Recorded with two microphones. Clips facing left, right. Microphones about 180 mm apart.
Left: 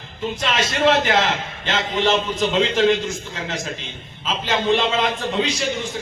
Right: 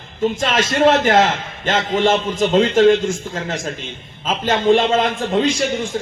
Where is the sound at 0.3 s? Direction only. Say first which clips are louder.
Right 2 dB; 50° right (ahead or behind).